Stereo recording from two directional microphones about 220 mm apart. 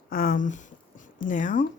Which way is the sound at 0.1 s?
40° left (ahead or behind).